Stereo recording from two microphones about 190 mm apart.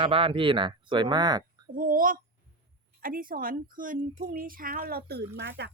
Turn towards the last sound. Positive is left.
turn(degrees=-65)  # may be behind; listen again after turning